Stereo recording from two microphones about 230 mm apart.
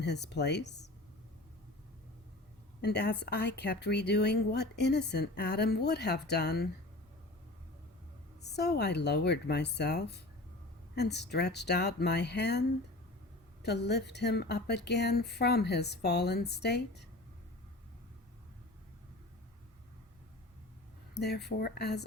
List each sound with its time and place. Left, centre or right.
0.0 s speech: left
2.8 s speech: left
8.4 s speech: left
21.2 s speech: left